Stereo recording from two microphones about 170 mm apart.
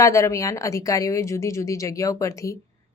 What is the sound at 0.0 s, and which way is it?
Speech, 20° left (ahead or behind).